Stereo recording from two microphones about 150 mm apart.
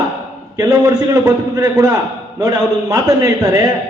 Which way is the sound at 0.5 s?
25° right (ahead or behind).